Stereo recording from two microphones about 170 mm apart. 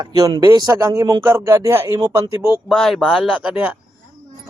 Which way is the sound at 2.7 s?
Centre (ahead or behind).